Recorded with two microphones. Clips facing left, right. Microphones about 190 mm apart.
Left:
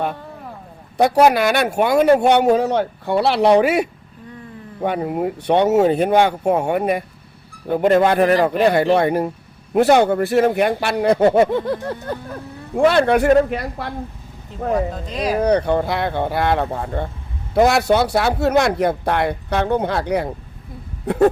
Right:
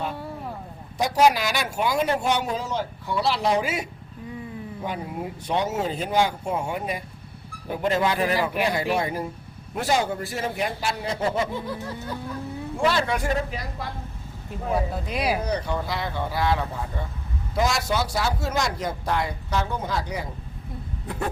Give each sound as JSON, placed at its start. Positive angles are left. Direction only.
{"t": 0.9, "sound": "speech", "side_deg": 60}
{"t": 14.7, "sound": "speech", "side_deg": -10}
{"t": 15.4, "sound": "speech", "side_deg": 60}